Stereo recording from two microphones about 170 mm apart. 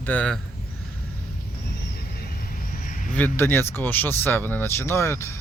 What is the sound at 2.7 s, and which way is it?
Vehicle, 50° left (ahead or behind).